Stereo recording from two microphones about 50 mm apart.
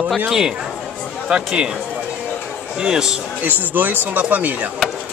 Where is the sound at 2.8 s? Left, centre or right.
Centre.